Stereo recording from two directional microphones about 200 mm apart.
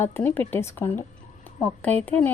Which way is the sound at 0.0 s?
10° left (ahead or behind).